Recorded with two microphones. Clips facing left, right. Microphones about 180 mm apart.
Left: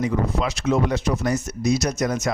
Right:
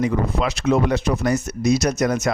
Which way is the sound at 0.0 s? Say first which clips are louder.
Right 2 dB; 65° right (ahead or behind).